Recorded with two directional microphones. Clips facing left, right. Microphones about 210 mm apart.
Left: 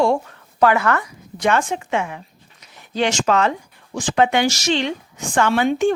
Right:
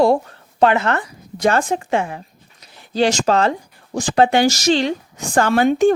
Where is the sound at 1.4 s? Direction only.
35° right (ahead or behind).